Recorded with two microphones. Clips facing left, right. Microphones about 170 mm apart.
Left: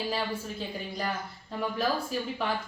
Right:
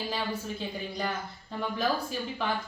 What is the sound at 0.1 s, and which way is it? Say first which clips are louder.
Speech: left 1 dB; centre (ahead or behind).